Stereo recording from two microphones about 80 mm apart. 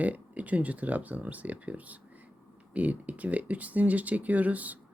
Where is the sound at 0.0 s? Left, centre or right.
Centre.